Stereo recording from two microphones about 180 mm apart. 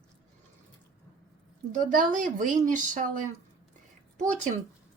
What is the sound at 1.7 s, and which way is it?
Speech, 45° right (ahead or behind).